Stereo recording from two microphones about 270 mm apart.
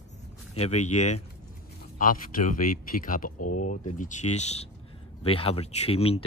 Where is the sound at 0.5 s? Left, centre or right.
Left.